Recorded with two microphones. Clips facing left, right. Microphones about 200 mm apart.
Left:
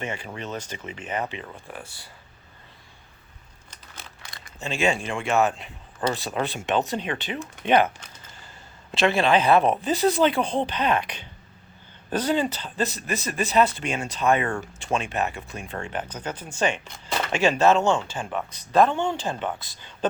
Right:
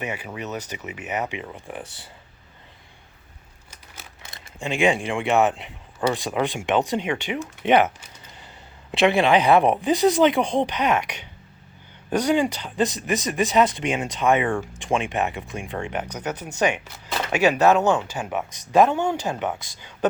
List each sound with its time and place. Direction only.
0.0 s speech: 10° right (ahead or behind)
3.7 s scissors: 10° right (ahead or behind)
4.2 s speech: 20° right (ahead or behind)